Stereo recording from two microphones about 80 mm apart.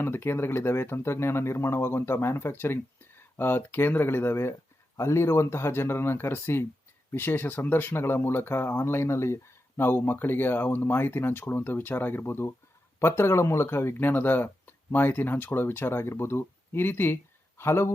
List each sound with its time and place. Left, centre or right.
0.0 s speech: left